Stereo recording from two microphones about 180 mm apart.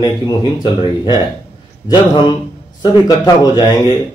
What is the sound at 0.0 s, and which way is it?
Speech, 25° left (ahead or behind).